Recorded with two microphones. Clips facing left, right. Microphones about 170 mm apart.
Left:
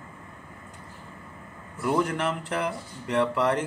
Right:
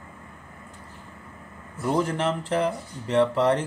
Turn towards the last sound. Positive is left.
turn(degrees=-30)  # may be behind; listen again after turning